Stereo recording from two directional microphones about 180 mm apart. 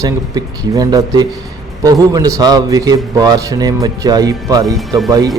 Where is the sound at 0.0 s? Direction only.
20° right (ahead or behind).